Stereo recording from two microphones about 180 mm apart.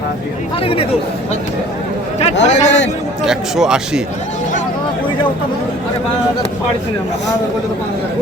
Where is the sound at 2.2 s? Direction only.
40° left (ahead or behind).